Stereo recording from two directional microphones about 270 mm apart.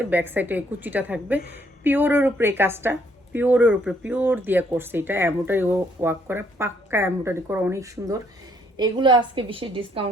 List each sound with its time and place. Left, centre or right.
0.0 s a woman's voice: centre